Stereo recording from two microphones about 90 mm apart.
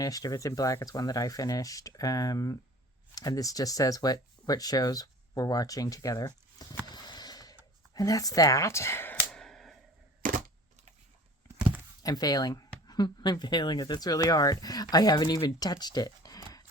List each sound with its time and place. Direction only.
0.0 s speech: 40° left (ahead or behind)
6.8 s clip-clop: 50° left (ahead or behind)
7.9 s speech: 40° left (ahead or behind)
9.3 s a sound: 5° left (ahead or behind)
12.0 s speech: 45° left (ahead or behind)